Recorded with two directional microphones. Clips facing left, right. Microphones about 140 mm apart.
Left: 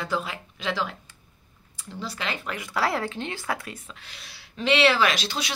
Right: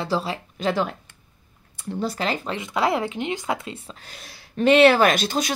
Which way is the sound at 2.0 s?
40° right (ahead or behind).